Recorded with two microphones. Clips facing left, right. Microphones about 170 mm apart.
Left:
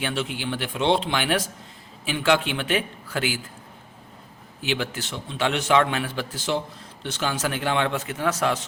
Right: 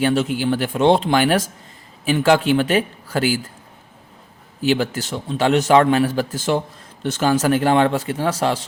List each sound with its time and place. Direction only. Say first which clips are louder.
0.0 s a man's voice: right 10 dB; 40° right (ahead or behind)
4.6 s a man's voice: right 8 dB; 40° right (ahead or behind)